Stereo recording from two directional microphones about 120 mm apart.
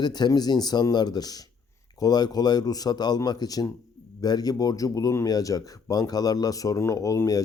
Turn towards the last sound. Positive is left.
turn(degrees=25)  # may be behind; listen again after turning